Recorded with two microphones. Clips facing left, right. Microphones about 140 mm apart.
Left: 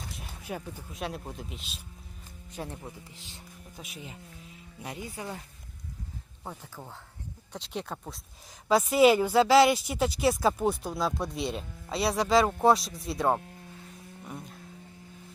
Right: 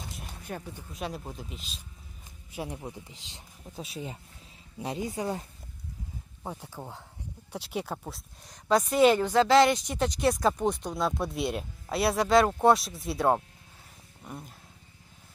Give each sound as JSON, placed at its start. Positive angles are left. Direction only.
{"t": 0.0, "sound": "speech", "side_deg": 0}
{"t": 2.5, "sound": "speech", "side_deg": -15}
{"t": 3.8, "sound": "speech", "side_deg": -30}